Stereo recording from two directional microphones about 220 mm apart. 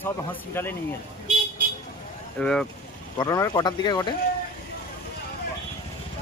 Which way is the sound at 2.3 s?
5° left (ahead or behind).